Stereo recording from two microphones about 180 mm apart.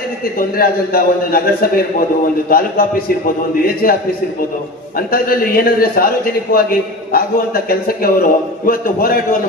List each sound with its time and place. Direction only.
0.6 s a man's voice: 55° left (ahead or behind)
3.8 s a man's voice: 50° left (ahead or behind)